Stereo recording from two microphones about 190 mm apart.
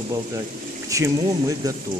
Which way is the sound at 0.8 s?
15° right (ahead or behind).